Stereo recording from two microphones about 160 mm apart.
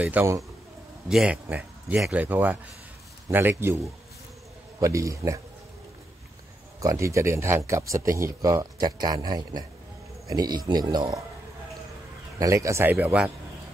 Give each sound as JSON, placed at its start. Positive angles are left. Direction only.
{"t": 0.0, "sound": "speech", "side_deg": -10}
{"t": 6.8, "sound": "speech", "side_deg": -20}
{"t": 12.4, "sound": "speech", "side_deg": -20}